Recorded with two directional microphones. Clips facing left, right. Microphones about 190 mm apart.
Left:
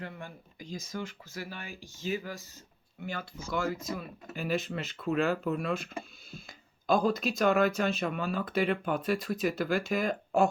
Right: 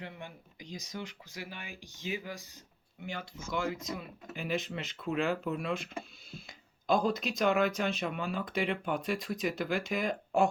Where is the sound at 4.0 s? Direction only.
15° right (ahead or behind).